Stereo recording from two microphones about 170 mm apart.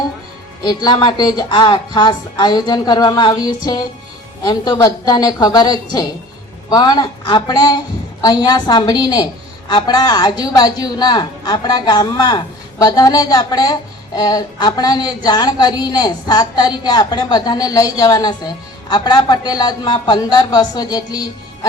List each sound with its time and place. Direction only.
0.6 s a woman's voice: 25° left (ahead or behind)